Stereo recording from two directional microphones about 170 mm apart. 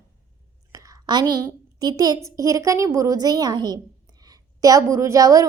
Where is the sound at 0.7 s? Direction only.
20° right (ahead or behind).